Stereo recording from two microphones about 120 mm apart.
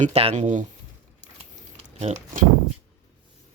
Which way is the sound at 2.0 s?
65° right (ahead or behind).